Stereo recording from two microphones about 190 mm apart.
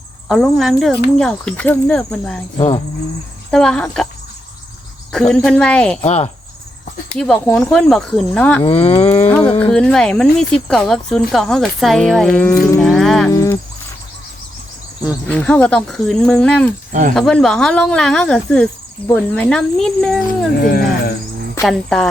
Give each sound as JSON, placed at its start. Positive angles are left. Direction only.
{"t": 0.3, "sound": "speech", "side_deg": 0}
{"t": 2.6, "sound": "speech", "side_deg": 35}
{"t": 3.5, "sound": "speech", "side_deg": 5}
{"t": 5.1, "sound": "speech", "side_deg": 5}
{"t": 6.0, "sound": "speech", "side_deg": 35}
{"t": 7.2, "sound": "speech", "side_deg": 10}
{"t": 8.6, "sound": "speech", "side_deg": 30}
{"t": 9.3, "sound": "a sound", "side_deg": 5}
{"t": 9.7, "sound": "speech", "side_deg": 5}
{"t": 13.3, "sound": "music", "side_deg": 15}
{"t": 15.3, "sound": "speech", "side_deg": 5}
{"t": 20.6, "sound": "speech", "side_deg": 55}
{"t": 21.6, "sound": "speech", "side_deg": 0}